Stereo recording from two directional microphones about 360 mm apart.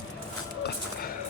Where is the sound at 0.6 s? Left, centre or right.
Left.